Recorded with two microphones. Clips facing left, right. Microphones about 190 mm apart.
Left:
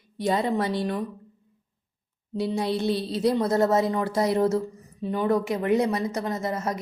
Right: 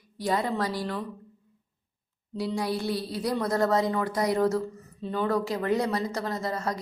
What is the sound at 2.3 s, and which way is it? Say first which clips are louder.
A woman's voice: left 3 dB; 25° left (ahead or behind).